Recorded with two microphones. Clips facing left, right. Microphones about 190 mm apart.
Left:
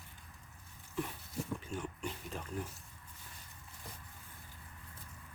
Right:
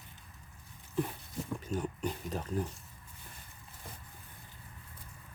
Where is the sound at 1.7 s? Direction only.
40° right (ahead or behind).